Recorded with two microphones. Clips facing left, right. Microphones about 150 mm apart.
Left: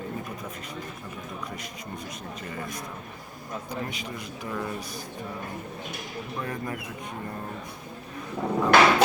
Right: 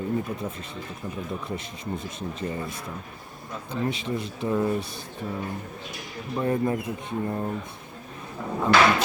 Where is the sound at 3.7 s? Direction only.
25° right (ahead or behind).